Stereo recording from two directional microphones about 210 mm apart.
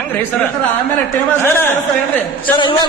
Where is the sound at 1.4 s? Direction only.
10° left (ahead or behind).